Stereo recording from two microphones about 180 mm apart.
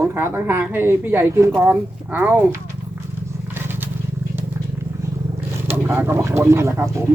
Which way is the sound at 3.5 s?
10° right (ahead or behind).